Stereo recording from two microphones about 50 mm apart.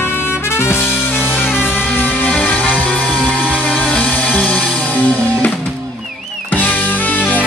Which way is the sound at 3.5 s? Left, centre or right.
Left.